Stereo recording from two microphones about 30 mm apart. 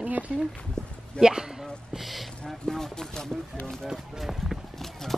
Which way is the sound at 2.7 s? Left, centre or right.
Centre.